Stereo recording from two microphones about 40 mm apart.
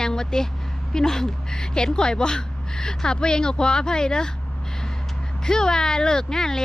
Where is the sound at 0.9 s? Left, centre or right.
Centre.